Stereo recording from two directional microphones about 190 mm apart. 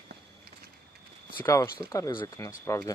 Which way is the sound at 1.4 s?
15° left (ahead or behind).